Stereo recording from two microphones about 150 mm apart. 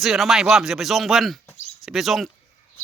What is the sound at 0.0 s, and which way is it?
Speech, centre (ahead or behind).